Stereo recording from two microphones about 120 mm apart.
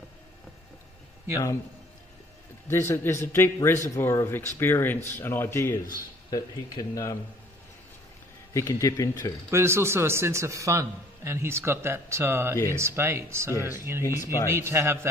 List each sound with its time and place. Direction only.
2.7 s speech: 20° left (ahead or behind)
8.5 s speech: 30° left (ahead or behind)
9.5 s a man's voice: 20° right (ahead or behind)
14.0 s speech: 25° left (ahead or behind)
14.5 s a man's voice: 20° right (ahead or behind)